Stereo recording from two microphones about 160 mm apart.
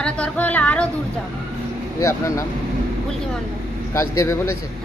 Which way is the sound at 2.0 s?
20° left (ahead or behind).